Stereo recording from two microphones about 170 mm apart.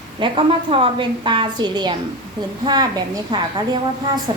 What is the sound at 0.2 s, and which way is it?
A woman's voice, 30° right (ahead or behind).